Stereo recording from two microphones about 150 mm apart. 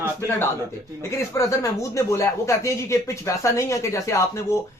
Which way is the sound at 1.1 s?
20° left (ahead or behind).